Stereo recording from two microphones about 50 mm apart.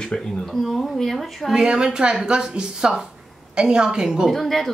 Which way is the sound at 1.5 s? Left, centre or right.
Centre.